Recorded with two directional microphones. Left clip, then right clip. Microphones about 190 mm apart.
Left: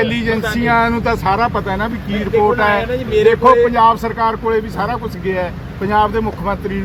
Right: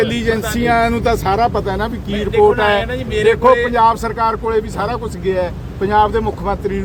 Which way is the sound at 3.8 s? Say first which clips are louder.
Left 1 dB; 40° right (ahead or behind).